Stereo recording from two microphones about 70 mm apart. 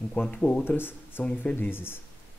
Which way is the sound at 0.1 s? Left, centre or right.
Centre.